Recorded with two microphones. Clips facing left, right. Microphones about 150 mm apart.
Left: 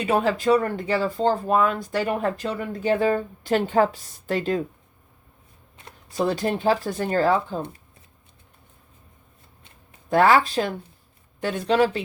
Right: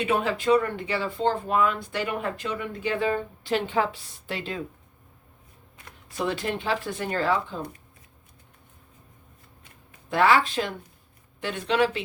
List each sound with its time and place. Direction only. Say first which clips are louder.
0.0 s speech: left 3 dB; 40° left (ahead or behind)
5.7 s speech: left 7 dB; 30° left (ahead or behind)
10.1 s speech: left 3 dB; 40° left (ahead or behind)